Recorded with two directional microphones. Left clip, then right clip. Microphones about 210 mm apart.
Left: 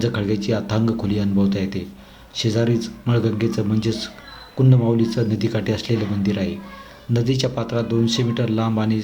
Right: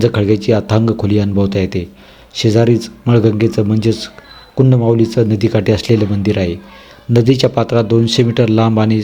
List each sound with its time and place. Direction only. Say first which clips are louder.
0.0 s speech: right 10 dB; 35° right (ahead or behind)